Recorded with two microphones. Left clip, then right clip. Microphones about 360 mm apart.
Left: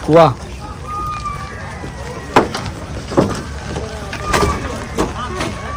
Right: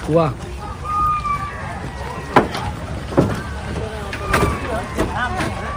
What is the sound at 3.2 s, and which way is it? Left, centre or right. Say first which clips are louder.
Vehicle: left 3 dB; left.